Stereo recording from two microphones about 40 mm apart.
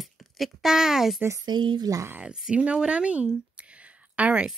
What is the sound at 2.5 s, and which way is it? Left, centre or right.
Speech, right.